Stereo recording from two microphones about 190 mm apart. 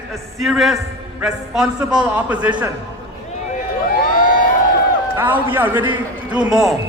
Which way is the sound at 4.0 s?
45° left (ahead or behind).